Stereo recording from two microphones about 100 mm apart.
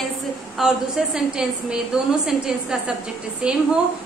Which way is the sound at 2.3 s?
5° right (ahead or behind).